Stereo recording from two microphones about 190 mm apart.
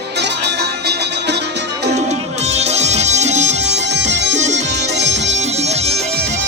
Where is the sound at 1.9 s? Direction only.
35° right (ahead or behind).